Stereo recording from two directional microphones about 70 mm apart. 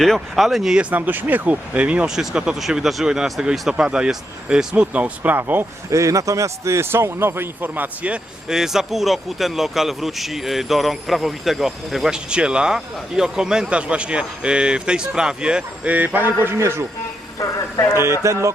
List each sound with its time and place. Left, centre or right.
0.0 s a man's voice: centre
0.8 s speech: right
2.0 s speech: centre
3.8 s speech: centre
5.9 s a man's voice: right; by 12.1 s centre
12.1 s speech: centre; by 16.8 s right
17.4 s speech: left
17.9 s speech: right